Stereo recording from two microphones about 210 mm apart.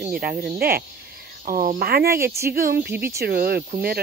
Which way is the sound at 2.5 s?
45° right (ahead or behind).